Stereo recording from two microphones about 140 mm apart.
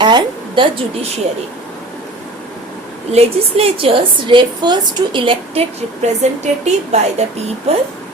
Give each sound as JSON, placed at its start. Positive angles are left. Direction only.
{"t": 0.0, "sound": "a sound", "side_deg": -30}
{"t": 3.1, "sound": "a woman's voice", "side_deg": -45}
{"t": 6.0, "sound": "a woman's voice", "side_deg": -55}